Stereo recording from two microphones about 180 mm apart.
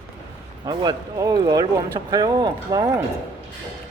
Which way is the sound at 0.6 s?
20° right (ahead or behind).